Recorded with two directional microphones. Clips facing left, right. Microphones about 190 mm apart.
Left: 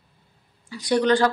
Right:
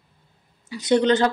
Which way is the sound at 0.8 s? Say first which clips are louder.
Right 1 dB; 20° right (ahead or behind).